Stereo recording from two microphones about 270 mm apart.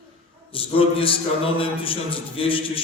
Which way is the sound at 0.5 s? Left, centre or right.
Centre.